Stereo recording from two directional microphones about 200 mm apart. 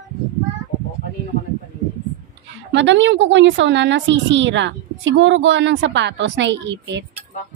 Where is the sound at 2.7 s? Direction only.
65° right (ahead or behind).